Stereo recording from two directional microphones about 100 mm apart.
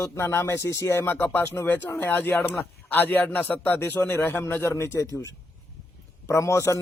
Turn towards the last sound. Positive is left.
turn(degrees=30)  # may be behind; listen again after turning